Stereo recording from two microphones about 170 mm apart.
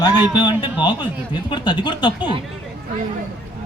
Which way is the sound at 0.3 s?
25° left (ahead or behind).